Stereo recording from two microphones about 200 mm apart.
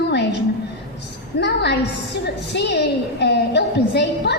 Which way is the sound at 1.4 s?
60° left (ahead or behind).